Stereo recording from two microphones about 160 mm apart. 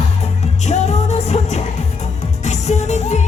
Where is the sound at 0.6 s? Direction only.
45° left (ahead or behind).